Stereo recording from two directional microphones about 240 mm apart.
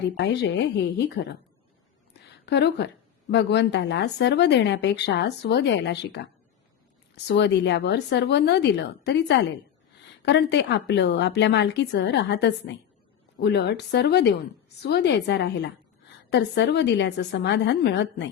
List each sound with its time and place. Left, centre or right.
0.2 s speech: left
2.5 s speech: left
7.3 s speech: left